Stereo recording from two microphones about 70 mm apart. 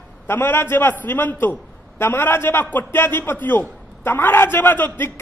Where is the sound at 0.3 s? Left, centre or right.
Left.